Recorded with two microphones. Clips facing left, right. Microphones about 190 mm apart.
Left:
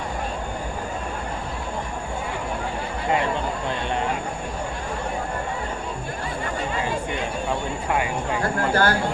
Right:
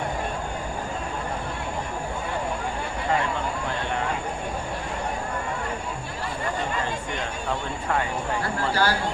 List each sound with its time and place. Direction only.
8.7 s speech: 50° left (ahead or behind)